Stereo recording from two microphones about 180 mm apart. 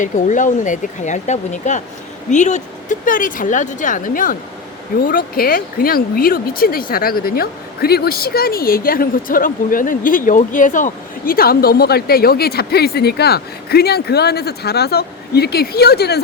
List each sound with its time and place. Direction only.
0.0 s a woman's voice: 45° left (ahead or behind); by 16.2 s 65° left (ahead or behind)